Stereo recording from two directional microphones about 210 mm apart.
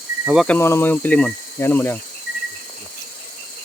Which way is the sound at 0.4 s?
10° left (ahead or behind).